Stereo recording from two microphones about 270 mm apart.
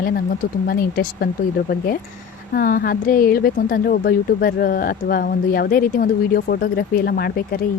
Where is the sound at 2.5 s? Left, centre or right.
Left.